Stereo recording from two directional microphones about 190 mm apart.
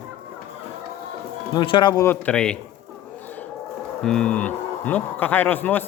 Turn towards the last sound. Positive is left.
turn(degrees=10)  # may be behind; listen again after turning